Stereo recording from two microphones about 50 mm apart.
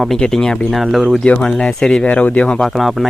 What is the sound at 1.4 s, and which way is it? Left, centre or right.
Speech, centre.